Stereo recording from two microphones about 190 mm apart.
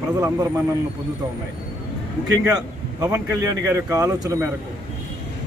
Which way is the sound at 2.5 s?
20° right (ahead or behind).